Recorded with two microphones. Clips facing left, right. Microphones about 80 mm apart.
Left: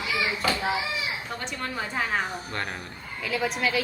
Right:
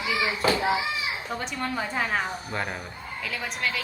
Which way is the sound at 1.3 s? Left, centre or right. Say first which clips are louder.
Right 3 dB; centre.